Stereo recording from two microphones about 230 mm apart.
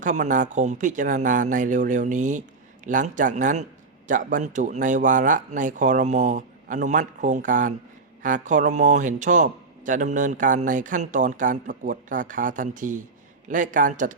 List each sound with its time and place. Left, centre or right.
0.0 s a man's voice: right